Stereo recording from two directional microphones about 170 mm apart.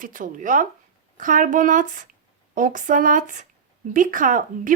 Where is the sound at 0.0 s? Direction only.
50° right (ahead or behind).